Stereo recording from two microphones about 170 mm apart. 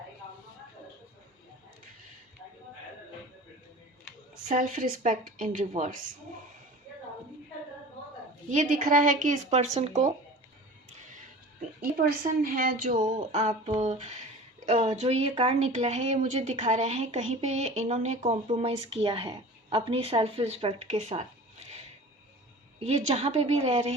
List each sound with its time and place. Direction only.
4.4 s a woman's voice: 50° right (ahead or behind)
8.4 s a woman's voice: 50° right (ahead or behind)
11.8 s a woman's voice: 55° right (ahead or behind); by 21.8 s 40° right (ahead or behind)
22.8 s a woman's voice: 40° right (ahead or behind)